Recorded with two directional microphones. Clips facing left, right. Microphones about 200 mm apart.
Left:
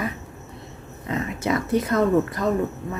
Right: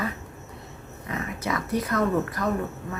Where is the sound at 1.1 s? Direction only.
25° left (ahead or behind).